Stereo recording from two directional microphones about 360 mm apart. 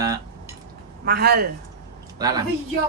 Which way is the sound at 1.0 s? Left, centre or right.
Right.